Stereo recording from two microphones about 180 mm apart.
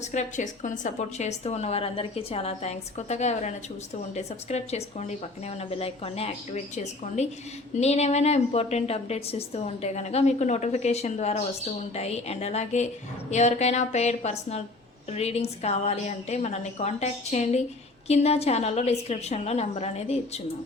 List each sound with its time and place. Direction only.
0.1 s a woman's voice: 40° left (ahead or behind)